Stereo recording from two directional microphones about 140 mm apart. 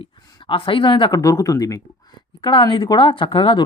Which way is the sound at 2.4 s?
35° left (ahead or behind).